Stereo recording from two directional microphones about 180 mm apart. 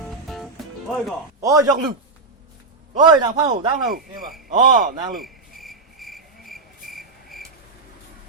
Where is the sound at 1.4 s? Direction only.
20° right (ahead or behind).